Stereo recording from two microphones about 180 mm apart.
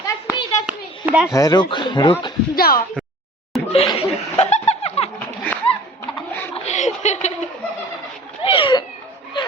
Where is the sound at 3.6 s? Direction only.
35° left (ahead or behind).